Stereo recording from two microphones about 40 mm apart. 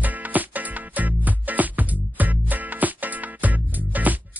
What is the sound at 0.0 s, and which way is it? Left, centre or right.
Music, right.